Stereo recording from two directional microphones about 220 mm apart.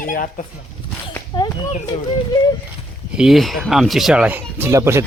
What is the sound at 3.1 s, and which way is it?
Speech, centre (ahead or behind).